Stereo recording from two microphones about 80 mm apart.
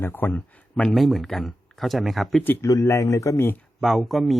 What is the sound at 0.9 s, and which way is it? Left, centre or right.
Speech, centre.